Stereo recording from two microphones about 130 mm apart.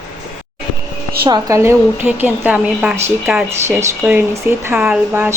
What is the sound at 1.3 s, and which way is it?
A woman's voice, 25° right (ahead or behind).